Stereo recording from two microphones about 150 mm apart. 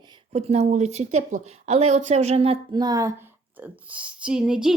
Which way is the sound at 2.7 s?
25° right (ahead or behind).